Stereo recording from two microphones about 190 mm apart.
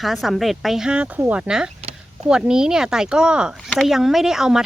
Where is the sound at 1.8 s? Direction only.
35° right (ahead or behind).